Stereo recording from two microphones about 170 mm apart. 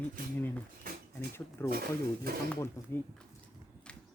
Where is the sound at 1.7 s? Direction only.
60° right (ahead or behind).